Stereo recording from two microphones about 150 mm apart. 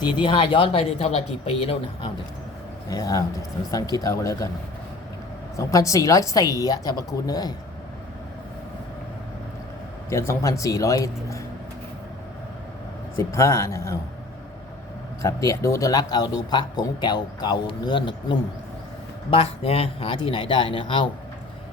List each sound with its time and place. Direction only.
0.2 s speech: 35° left (ahead or behind)
2.9 s speech: 25° left (ahead or behind)
5.5 s speech: 20° left (ahead or behind)
10.1 s speech: 20° left (ahead or behind)
13.1 s speech: 20° left (ahead or behind)
15.2 s speech: 20° left (ahead or behind)